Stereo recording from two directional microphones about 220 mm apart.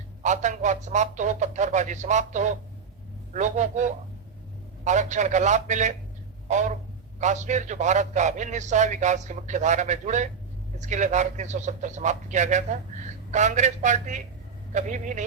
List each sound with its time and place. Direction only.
0.2 s a man's voice: 35° right (ahead or behind)